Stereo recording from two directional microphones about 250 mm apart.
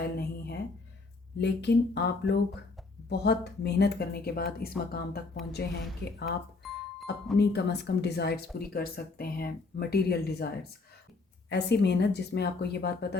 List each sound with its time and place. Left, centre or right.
0.0 s a sound: left
1.4 s speech: left
7.3 s speech: left